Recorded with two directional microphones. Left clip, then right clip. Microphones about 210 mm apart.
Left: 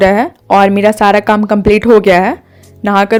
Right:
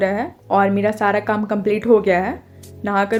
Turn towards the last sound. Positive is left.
turn(degrees=45)  # may be behind; listen again after turning